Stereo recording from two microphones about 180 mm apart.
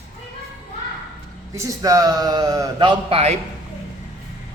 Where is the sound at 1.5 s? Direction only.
20° right (ahead or behind); by 3.4 s 35° right (ahead or behind).